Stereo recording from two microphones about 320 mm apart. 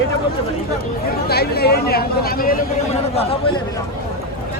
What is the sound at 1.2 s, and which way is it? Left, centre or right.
Speech, left.